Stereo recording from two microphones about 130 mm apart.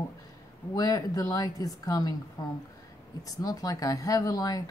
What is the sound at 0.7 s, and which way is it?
Speech, 30° left (ahead or behind).